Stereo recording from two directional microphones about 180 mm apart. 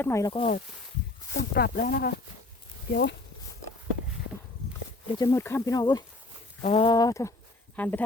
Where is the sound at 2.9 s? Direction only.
65° left (ahead or behind).